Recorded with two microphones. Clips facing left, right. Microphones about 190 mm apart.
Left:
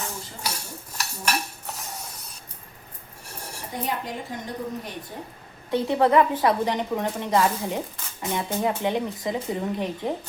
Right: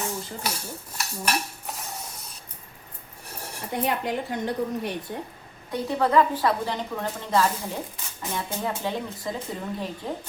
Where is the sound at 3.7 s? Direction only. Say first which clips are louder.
Right 5 dB; 65° right (ahead or behind).